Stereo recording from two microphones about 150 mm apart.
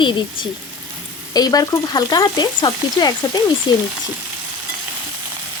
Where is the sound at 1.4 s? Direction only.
25° left (ahead or behind).